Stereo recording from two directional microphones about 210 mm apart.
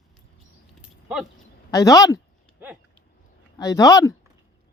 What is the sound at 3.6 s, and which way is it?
Speech, 15° left (ahead or behind).